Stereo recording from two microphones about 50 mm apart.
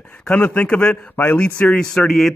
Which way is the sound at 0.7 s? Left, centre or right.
Left.